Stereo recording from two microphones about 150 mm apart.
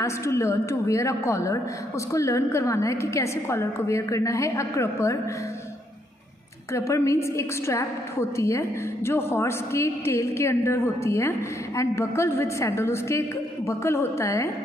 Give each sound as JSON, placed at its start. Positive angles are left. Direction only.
{"t": 0.0, "sound": "a woman's voice", "side_deg": 20}
{"t": 6.7, "sound": "a woman's voice", "side_deg": 20}